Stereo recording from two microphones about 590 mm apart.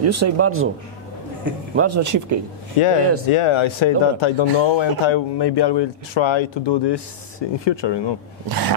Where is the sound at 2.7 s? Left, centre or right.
Left.